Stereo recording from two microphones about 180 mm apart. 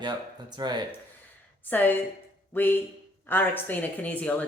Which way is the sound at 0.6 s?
25° right (ahead or behind).